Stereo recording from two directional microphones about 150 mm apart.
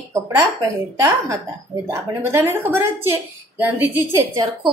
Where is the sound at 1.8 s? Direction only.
20° right (ahead or behind).